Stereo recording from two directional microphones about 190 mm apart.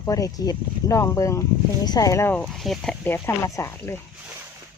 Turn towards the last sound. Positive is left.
turn(degrees=15)  # may be behind; listen again after turning